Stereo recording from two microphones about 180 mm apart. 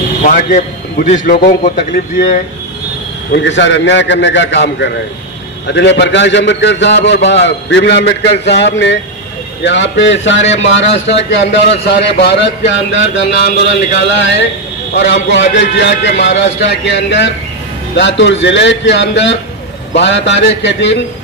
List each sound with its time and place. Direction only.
0.2 s a man's voice: 45° left (ahead or behind)
3.3 s a man's voice: 85° left